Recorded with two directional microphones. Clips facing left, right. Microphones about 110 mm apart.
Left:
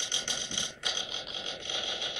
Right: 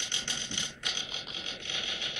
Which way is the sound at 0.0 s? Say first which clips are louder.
Left 1 dB; 20° left (ahead or behind).